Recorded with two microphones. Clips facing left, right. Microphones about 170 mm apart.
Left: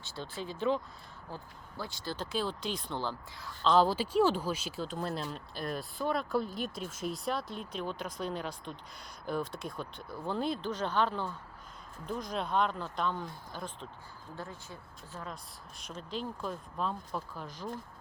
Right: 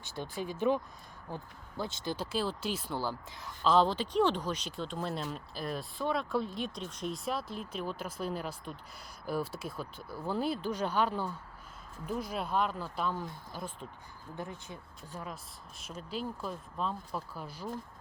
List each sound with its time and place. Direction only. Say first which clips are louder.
0.0 s speech: right 2 dB; 15° right (ahead or behind)
2.1 s speech: left 1 dB; 5° right (ahead or behind)
14.3 s speech: right 2 dB; 20° right (ahead or behind)